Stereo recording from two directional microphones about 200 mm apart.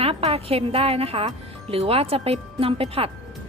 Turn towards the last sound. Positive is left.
turn(degrees=-30)  # may be behind; listen again after turning